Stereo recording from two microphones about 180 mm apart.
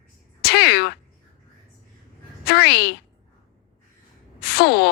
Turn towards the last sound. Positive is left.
turn(degrees=65)  # may be behind; listen again after turning